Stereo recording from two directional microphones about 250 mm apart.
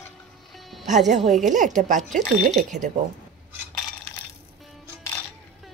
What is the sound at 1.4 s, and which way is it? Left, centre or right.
Speech, right.